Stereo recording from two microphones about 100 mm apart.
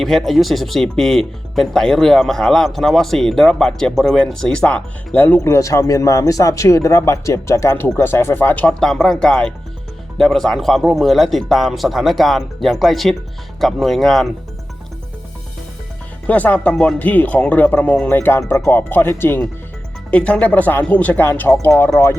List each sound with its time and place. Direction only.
0.0 s speech: centre (ahead or behind); by 5.4 s 20° left (ahead or behind)
5.4 s speech: 30° left (ahead or behind)
8.8 s speech: 5° left (ahead or behind)
16.2 s speech: 15° left (ahead or behind)